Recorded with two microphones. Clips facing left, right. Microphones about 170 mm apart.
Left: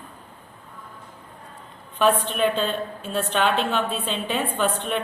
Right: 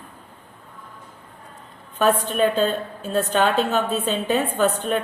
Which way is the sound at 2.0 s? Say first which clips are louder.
Right 1 dB; 45° right (ahead or behind).